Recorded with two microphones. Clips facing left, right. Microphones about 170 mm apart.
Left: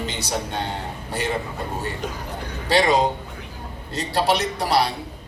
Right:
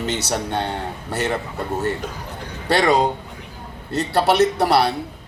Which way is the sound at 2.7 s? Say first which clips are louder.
Right 1 dB; 60° right (ahead or behind).